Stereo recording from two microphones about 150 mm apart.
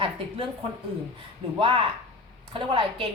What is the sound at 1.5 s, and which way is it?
Speech, 35° right (ahead or behind).